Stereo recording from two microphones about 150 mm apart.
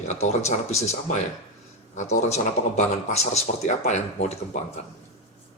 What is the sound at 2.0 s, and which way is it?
Speech, 50° left (ahead or behind).